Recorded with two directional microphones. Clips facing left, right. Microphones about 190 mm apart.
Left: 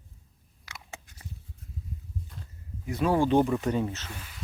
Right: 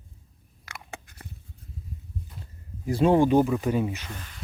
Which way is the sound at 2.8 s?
30° right (ahead or behind).